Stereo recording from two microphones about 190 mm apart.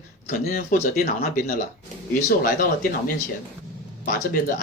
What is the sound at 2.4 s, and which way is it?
Speech, 50° left (ahead or behind).